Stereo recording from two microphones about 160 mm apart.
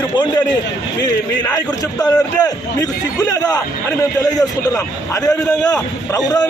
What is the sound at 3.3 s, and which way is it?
Speech, 20° left (ahead or behind).